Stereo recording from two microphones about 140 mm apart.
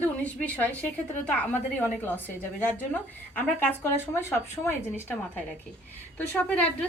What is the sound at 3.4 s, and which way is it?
A woman's voice, 15° left (ahead or behind).